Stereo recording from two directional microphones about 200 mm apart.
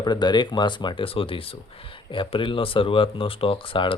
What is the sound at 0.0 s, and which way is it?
Speech, 20° left (ahead or behind).